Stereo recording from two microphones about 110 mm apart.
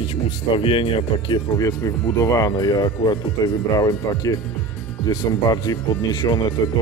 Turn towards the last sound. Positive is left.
turn(degrees=35)  # may be behind; listen again after turning